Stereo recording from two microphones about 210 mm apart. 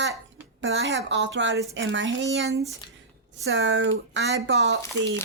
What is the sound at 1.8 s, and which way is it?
Speech, 60° right (ahead or behind).